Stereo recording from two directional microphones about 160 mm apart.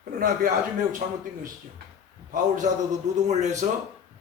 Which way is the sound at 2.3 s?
50° right (ahead or behind).